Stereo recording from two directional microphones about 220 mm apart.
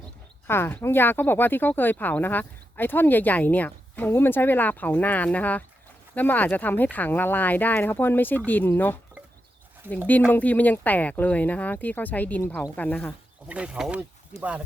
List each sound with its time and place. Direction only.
0.4 s speech: 10° left (ahead or behind)
9.8 s speech: 10° right (ahead or behind)
10.3 s speech: 5° left (ahead or behind)
13.5 s speech: 5° right (ahead or behind)
14.3 s speech: 30° left (ahead or behind)